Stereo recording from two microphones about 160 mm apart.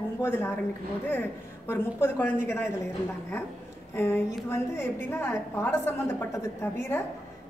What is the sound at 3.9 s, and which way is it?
A woman's voice, 15° left (ahead or behind).